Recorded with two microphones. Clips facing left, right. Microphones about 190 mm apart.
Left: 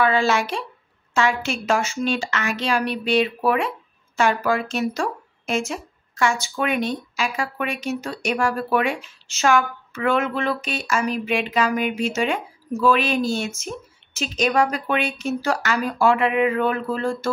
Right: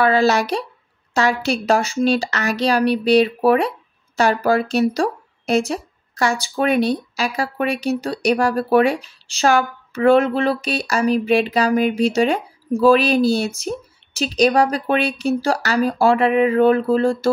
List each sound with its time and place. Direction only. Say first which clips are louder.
0.0 s speech: right 4 dB; 40° right (ahead or behind)